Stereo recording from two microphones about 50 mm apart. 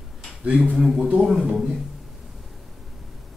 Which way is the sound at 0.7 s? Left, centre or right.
Centre.